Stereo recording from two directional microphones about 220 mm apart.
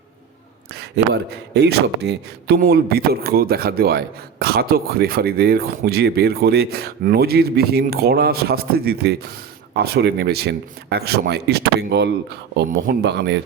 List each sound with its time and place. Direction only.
0.7 s speech: 50° right (ahead or behind)